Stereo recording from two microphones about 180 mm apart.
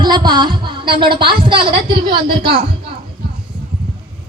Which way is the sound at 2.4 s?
65° right (ahead or behind).